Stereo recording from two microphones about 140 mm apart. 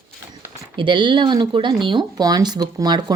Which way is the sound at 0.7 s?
35° right (ahead or behind).